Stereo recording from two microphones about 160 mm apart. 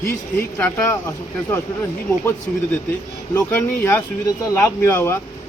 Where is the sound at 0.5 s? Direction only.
10° left (ahead or behind).